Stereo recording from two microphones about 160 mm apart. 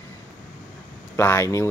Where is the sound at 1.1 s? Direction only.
15° left (ahead or behind).